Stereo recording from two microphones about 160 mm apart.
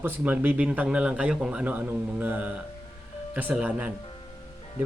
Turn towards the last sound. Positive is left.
turn(degrees=-10)  # may be behind; listen again after turning